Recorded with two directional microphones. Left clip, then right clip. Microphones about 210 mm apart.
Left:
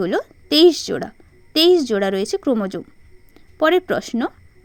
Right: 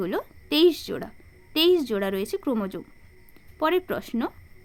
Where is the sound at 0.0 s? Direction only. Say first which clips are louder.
Left 8 dB; 25° left (ahead or behind).